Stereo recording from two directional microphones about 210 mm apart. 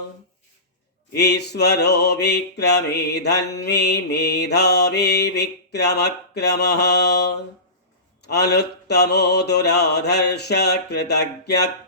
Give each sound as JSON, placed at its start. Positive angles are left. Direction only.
{"t": 1.1, "sound": "mantra", "side_deg": 50}